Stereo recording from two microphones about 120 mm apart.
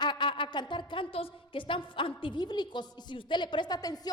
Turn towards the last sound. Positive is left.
turn(degrees=35)  # may be behind; listen again after turning